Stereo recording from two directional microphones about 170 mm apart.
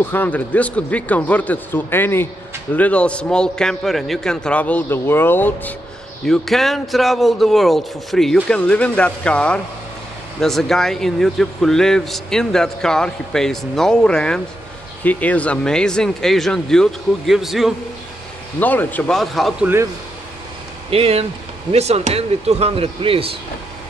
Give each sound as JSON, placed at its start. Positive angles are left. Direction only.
{"t": 0.0, "sound": "a man's voice", "side_deg": 10}
{"t": 18.6, "sound": "a man's voice", "side_deg": 10}
{"t": 20.9, "sound": "speech", "side_deg": -35}